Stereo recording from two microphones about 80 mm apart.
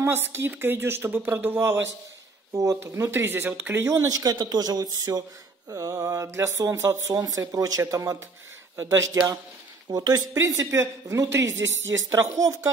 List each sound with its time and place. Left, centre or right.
0.0 s speech: right
2.5 s speech: right
3.9 s speech: right
9.8 s speech: right
10.3 s speech: right